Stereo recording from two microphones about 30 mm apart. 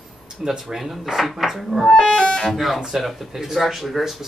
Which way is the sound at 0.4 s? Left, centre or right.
Right.